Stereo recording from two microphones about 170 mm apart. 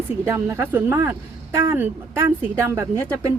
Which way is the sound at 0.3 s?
15° right (ahead or behind).